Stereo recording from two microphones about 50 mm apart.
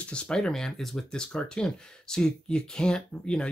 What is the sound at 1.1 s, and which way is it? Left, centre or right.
Speech, centre.